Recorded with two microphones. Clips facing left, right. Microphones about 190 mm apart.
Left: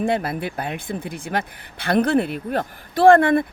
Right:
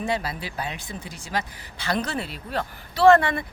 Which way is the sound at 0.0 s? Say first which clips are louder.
Left 6 dB; 55° left (ahead or behind).